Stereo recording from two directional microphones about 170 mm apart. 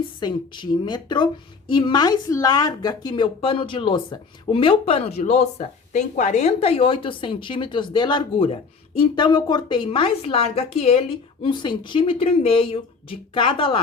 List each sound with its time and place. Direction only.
0.2 s a woman's voice: 25° left (ahead or behind)